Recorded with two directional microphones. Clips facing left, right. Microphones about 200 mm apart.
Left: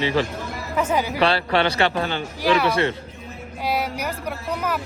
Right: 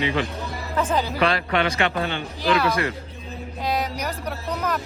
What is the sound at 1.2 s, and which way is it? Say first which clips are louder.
Speech: left 3 dB; 35° left (ahead or behind).